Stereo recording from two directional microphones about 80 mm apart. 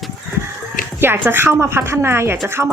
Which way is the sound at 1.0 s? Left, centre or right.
Right.